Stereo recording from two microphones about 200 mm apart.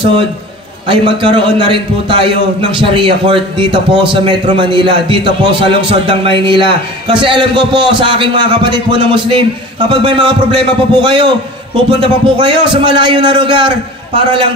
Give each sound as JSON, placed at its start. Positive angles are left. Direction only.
{"t": 0.8, "sound": "a man's voice", "side_deg": -25}